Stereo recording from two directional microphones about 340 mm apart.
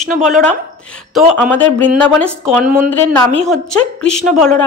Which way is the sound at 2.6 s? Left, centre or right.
Right.